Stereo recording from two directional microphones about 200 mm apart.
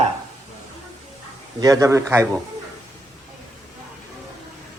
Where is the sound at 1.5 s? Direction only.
15° right (ahead or behind).